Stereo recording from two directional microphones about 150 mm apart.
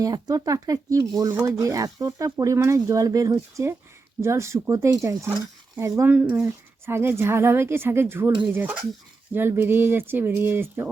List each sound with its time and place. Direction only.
0.0 s speech: 25° right (ahead or behind)